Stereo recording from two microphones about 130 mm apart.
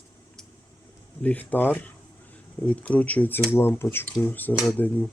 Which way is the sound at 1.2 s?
10° left (ahead or behind).